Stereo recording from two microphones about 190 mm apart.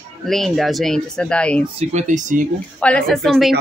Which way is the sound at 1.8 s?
40° right (ahead or behind).